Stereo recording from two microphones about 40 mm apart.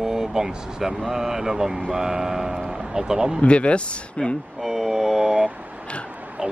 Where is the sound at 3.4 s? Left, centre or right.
Left.